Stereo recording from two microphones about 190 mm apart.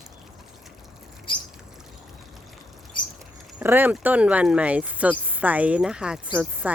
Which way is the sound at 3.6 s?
10° right (ahead or behind).